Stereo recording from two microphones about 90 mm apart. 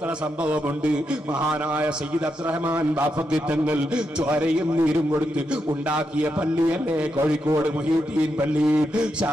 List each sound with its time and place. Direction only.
3.3 s a man's voice: 15° right (ahead or behind)
5.9 s a man's voice: 15° right (ahead or behind)
8.6 s a man's voice: 10° right (ahead or behind)